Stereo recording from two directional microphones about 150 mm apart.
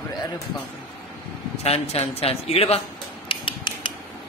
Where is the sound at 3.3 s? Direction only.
35° left (ahead or behind).